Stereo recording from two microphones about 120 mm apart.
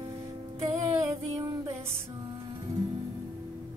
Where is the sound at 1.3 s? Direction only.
30° right (ahead or behind).